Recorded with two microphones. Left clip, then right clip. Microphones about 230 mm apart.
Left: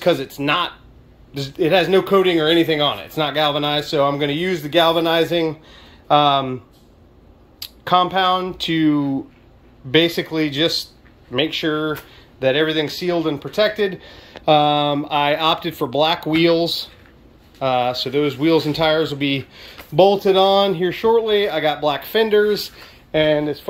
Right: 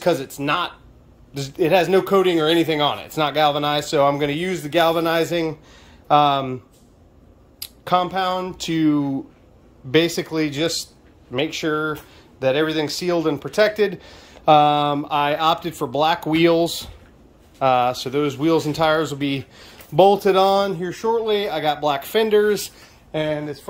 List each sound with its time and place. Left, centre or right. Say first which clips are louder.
0.0 s speech: left 2 dB; centre
7.8 s speech: left 4 dB; centre
23.3 s speech: left 7 dB; left